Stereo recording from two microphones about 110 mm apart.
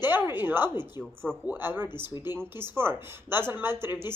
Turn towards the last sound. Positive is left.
turn(degrees=-20)  # may be behind; listen again after turning